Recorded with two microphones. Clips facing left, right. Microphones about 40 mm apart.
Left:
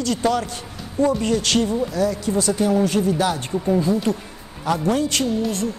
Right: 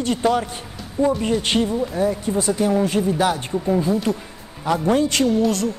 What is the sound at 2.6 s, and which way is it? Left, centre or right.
Speech, right.